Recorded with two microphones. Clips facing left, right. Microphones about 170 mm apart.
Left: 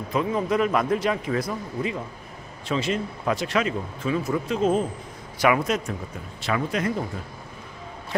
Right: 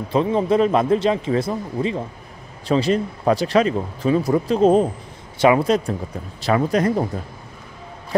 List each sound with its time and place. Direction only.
0.1 s speech: 30° right (ahead or behind)